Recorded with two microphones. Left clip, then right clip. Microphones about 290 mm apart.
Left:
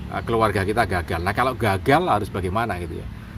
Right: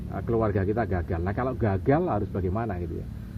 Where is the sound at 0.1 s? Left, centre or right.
Left.